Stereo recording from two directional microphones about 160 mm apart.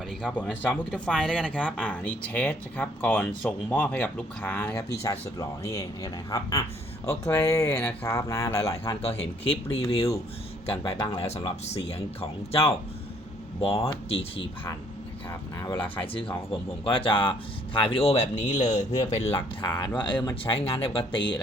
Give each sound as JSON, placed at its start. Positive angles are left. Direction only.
{"t": 0.2, "sound": "speech", "side_deg": 5}
{"t": 9.0, "sound": "speech", "side_deg": 40}
{"t": 11.3, "sound": "speech", "side_deg": 40}
{"t": 15.3, "sound": "speech", "side_deg": 15}
{"t": 15.8, "sound": "speech", "side_deg": 30}